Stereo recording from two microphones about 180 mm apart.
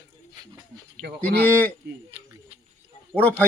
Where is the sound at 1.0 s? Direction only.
60° right (ahead or behind).